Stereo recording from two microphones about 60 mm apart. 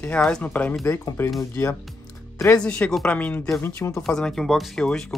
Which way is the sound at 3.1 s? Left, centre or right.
Left.